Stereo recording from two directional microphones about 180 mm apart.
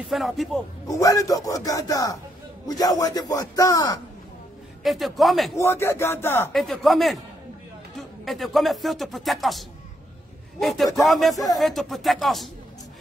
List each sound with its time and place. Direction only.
0.1 s speech: centre (ahead or behind)
0.8 s a man's voice: 20° left (ahead or behind)
4.8 s speech: centre (ahead or behind)
5.6 s speech: 15° left (ahead or behind)
6.5 s speech: centre (ahead or behind)
8.3 s speech: centre (ahead or behind)